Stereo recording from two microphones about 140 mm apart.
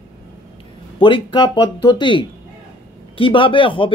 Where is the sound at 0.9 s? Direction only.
35° left (ahead or behind).